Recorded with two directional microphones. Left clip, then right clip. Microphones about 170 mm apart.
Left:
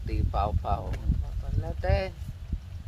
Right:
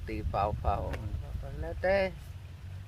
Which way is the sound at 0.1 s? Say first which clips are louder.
Left 1 dB; centre (ahead or behind).